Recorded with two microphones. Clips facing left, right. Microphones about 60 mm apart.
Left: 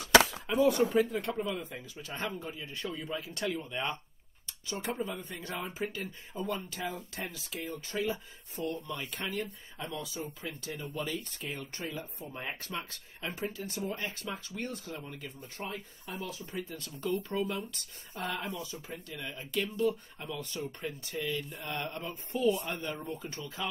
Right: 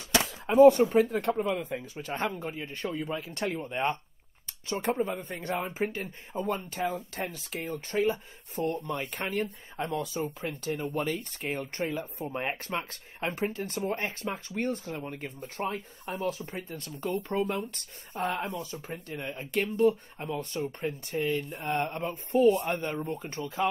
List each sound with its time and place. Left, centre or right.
0.5 s speech: right
2.0 s speech: right
11.9 s speech: right
12.3 s speech: right
23.0 s speech: right